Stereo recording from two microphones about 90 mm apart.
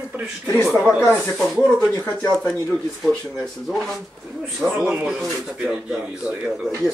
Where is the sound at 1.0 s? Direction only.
30° left (ahead or behind).